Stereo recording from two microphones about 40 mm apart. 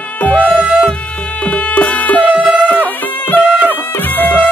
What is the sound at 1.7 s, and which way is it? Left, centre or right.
Music, left.